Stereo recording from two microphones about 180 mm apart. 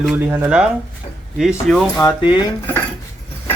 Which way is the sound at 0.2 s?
10° right (ahead or behind).